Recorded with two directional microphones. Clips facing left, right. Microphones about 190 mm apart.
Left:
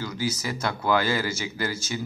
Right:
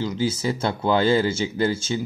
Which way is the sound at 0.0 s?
25° right (ahead or behind).